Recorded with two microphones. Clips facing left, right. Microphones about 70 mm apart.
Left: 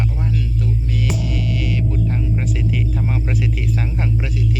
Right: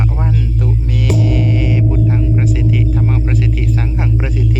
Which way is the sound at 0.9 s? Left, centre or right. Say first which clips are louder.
Right 10 dB; right.